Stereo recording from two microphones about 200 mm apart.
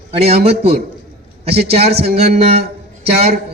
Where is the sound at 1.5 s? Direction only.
55° right (ahead or behind).